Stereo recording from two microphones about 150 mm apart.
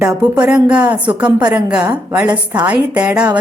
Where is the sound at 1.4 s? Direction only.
30° right (ahead or behind).